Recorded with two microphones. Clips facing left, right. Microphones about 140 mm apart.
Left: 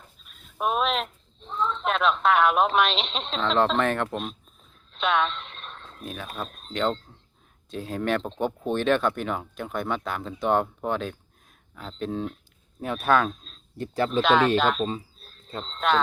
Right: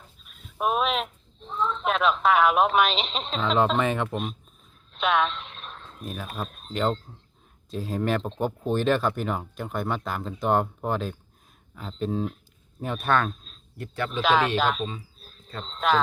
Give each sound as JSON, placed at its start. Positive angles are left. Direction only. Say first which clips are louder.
{"t": 0.3, "sound": "speech", "louder": "right 1 dB", "side_deg": 0}
{"t": 13.7, "sound": "speech", "louder": "left 5 dB", "side_deg": 30}
{"t": 14.2, "sound": "speech", "louder": "left 2 dB", "side_deg": 0}
{"t": 15.2, "sound": "a sound", "louder": "right 1 dB", "side_deg": 0}
{"t": 15.6, "sound": "speech", "louder": "even", "side_deg": 0}